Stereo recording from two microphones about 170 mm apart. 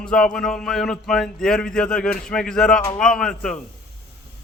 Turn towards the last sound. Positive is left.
turn(degrees=5)  # may be behind; listen again after turning